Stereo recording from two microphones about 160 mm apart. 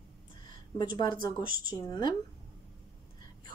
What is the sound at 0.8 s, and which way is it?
Speech, 25° left (ahead or behind).